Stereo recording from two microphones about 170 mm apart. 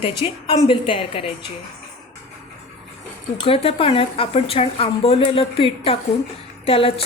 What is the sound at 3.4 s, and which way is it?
A woman's voice, 35° left (ahead or behind).